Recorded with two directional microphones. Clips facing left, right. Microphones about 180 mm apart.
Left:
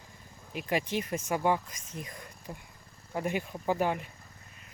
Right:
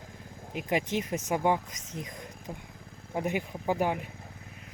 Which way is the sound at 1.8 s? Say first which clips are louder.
Right 3 dB; 80° right.